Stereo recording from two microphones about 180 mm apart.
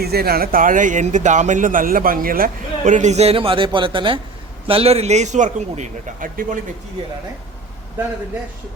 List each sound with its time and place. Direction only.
0.0 s a man's voice: 60° right (ahead or behind)